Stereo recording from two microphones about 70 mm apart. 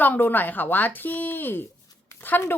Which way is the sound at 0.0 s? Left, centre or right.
Left.